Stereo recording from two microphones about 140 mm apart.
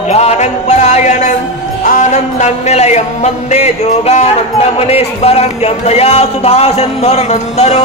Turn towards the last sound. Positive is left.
turn(degrees=50)  # may be behind; listen again after turning